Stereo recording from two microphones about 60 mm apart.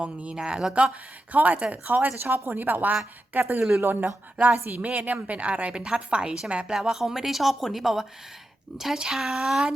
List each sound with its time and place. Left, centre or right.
0.0 s speech: right
1.3 s a woman's voice: right
6.7 s speech: centre